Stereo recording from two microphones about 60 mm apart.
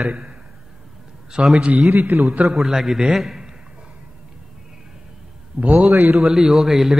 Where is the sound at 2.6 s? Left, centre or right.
Centre.